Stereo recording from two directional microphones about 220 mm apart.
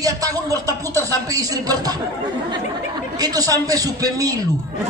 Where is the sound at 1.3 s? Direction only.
15° right (ahead or behind).